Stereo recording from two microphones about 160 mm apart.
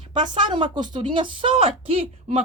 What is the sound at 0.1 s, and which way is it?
Speech, 30° right (ahead or behind).